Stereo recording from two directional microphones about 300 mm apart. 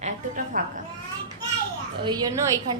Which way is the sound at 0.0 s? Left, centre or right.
Right.